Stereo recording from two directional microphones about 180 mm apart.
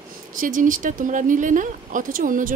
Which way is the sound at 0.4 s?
50° right (ahead or behind).